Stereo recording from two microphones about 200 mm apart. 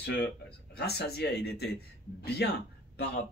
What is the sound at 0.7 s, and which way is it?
Speech, 55° left (ahead or behind).